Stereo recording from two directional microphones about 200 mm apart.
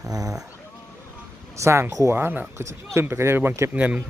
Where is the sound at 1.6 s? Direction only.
15° right (ahead or behind).